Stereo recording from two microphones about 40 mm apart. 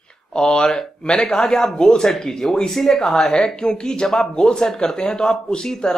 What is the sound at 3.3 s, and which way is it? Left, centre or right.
Speech, left.